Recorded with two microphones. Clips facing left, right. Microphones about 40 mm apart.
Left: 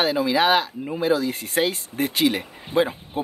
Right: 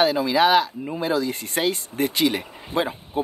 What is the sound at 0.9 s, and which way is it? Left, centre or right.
Speech, centre.